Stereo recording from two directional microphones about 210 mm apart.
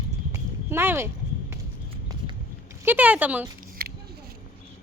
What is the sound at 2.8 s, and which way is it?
Speech, 5° right (ahead or behind).